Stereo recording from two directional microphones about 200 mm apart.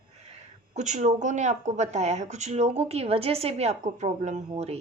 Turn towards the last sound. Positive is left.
turn(degrees=-30)  # may be behind; listen again after turning